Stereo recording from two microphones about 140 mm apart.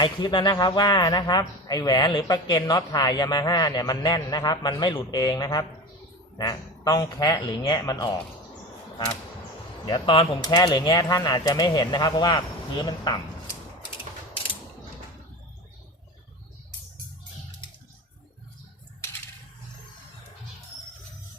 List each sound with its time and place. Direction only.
0.0 s speech: 35° left (ahead or behind)
9.8 s speech: 35° left (ahead or behind)